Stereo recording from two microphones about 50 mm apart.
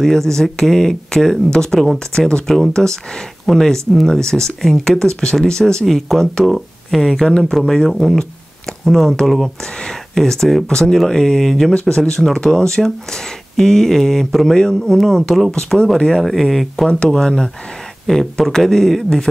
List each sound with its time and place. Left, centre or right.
0.0 s speech: centre
9.8 s speech: centre
17.1 s speech: centre